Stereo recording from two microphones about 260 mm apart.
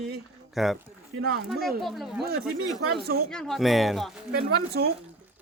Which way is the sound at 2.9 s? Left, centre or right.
Right.